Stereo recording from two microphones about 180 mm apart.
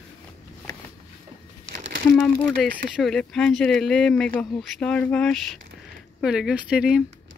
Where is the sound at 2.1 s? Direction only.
5° left (ahead or behind).